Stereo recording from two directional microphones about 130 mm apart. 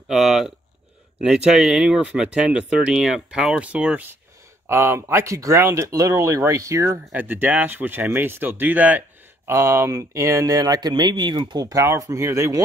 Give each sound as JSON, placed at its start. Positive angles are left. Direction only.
{"t": 0.1, "sound": "speech", "side_deg": 0}